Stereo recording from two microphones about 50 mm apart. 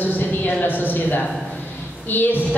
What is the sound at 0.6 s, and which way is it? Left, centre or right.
A woman's voice, left.